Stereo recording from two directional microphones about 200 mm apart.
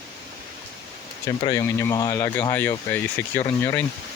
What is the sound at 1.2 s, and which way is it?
Speech, 15° left (ahead or behind).